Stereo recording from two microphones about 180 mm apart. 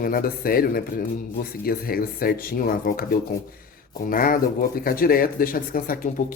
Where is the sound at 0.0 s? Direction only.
55° left (ahead or behind).